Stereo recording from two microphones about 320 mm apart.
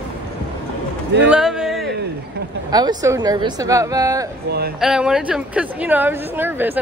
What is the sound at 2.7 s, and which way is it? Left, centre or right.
A woman's voice, centre.